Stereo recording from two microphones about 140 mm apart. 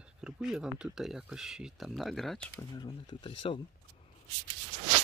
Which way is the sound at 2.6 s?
30° left (ahead or behind).